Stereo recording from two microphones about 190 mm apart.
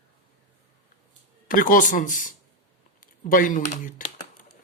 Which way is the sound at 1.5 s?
45° left (ahead or behind).